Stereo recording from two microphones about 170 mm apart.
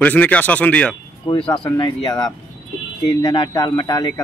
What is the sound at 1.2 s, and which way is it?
Speech, 25° left (ahead or behind).